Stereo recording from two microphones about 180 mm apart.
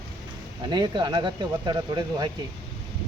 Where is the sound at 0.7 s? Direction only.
25° right (ahead or behind).